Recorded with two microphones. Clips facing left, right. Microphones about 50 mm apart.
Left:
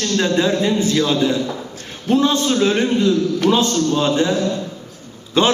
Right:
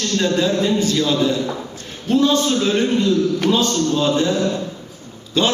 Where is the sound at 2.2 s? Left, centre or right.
Centre.